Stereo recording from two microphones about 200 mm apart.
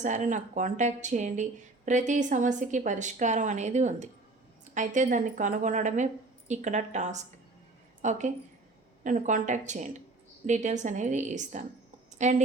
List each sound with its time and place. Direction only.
0.0 s speech: 40° right (ahead or behind)